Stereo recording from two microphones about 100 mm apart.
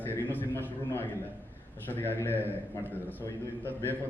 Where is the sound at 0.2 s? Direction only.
20° left (ahead or behind).